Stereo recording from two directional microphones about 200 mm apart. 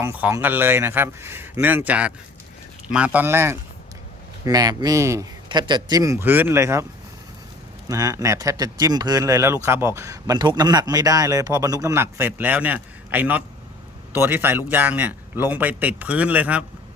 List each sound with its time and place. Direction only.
0.0 s speech: 10° right (ahead or behind)
7.9 s speech: 15° right (ahead or behind)